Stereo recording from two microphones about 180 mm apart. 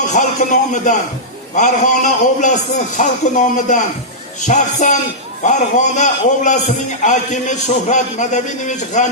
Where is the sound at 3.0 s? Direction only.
45° left (ahead or behind).